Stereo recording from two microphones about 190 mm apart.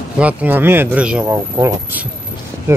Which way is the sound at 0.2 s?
5° right (ahead or behind).